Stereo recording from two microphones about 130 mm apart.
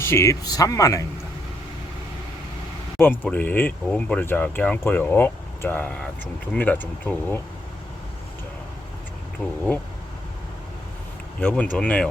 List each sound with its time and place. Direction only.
0.0 s speech: 20° left (ahead or behind)
3.2 s speech: 10° left (ahead or behind)
9.4 s speech: 15° left (ahead or behind)
11.3 s speech: 10° left (ahead or behind)